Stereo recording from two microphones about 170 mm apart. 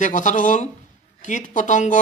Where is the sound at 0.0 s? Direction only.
50° left (ahead or behind).